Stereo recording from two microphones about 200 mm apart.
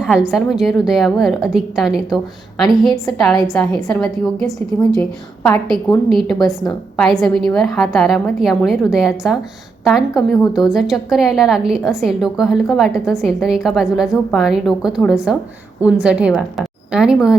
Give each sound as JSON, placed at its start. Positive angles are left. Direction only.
{"t": 0.0, "sound": "a woman's voice", "side_deg": -5}